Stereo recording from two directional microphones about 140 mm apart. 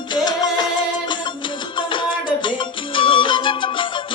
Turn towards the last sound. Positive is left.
turn(degrees=35)  # may be behind; listen again after turning